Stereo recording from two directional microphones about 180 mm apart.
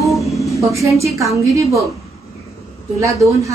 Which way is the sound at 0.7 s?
15° right (ahead or behind).